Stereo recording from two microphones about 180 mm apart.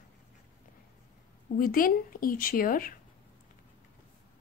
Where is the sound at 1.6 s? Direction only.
50° left (ahead or behind).